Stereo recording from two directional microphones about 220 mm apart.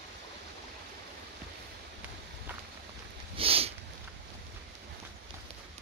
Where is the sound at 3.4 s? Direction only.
25° right (ahead or behind).